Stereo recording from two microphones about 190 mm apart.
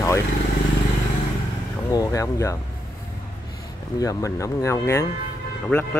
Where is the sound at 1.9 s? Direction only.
15° left (ahead or behind).